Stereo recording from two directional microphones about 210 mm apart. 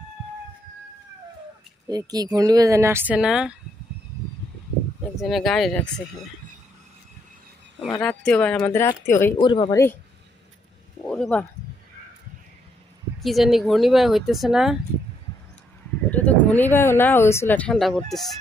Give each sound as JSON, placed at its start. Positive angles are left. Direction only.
{"t": 1.9, "sound": "speech", "side_deg": -20}
{"t": 5.1, "sound": "speech", "side_deg": 0}
{"t": 7.8, "sound": "speech", "side_deg": 5}
{"t": 9.4, "sound": "speech", "side_deg": 20}
{"t": 11.1, "sound": "a sound", "side_deg": 5}
{"t": 13.2, "sound": "speech", "side_deg": 0}
{"t": 16.1, "sound": "a sound", "side_deg": 10}
{"t": 16.7, "sound": "speech", "side_deg": 10}